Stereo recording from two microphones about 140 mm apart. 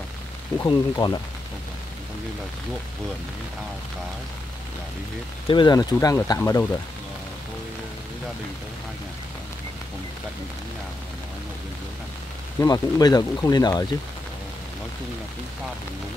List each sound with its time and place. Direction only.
0.6 s speech: 30° left (ahead or behind)
5.5 s speech: 30° left (ahead or behind)
12.5 s speech: 25° left (ahead or behind)